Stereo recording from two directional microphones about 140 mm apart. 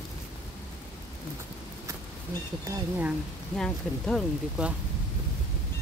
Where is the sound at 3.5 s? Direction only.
5° left (ahead or behind).